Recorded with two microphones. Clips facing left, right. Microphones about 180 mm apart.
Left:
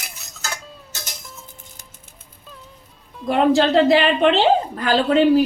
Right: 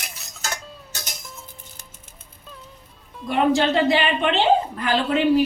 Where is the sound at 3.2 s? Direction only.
40° left (ahead or behind).